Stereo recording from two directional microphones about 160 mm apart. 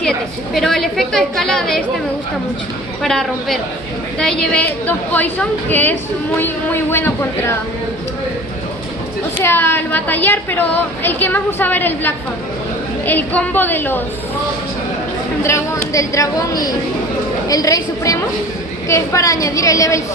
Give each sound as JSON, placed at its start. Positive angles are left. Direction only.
{"t": 0.6, "sound": "a woman's voice", "side_deg": 0}
{"t": 3.0, "sound": "a woman's voice", "side_deg": 0}
{"t": 9.4, "sound": "a woman's voice", "side_deg": 15}
{"t": 15.4, "sound": "a woman's voice", "side_deg": 20}